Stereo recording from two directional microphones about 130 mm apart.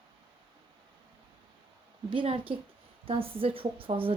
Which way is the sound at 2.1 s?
40° right (ahead or behind).